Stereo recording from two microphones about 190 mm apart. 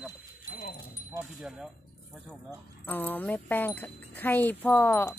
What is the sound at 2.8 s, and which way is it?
Speech, 10° left (ahead or behind).